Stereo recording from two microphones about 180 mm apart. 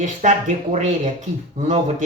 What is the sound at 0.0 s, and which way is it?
Speech, 40° right (ahead or behind).